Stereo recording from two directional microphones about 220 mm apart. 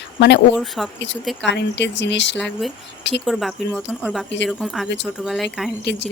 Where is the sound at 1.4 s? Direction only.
55° left (ahead or behind).